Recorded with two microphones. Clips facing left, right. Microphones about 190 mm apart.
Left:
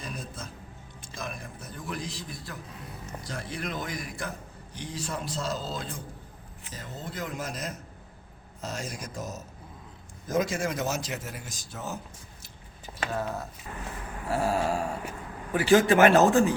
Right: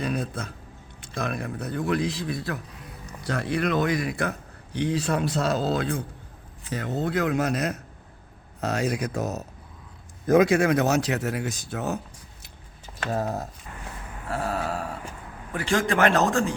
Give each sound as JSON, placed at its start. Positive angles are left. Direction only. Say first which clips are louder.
{"t": 0.0, "sound": "a man's voice", "louder": "right 10 dB", "side_deg": -65}
{"t": 13.1, "sound": "speech", "louder": "right 5 dB", "side_deg": -40}
{"t": 14.3, "sound": "grunt", "louder": "left 2 dB", "side_deg": 0}
{"t": 14.6, "sound": "a sound", "louder": "left 2 dB", "side_deg": 25}
{"t": 16.0, "sound": "grunt", "louder": "right 1 dB", "side_deg": 5}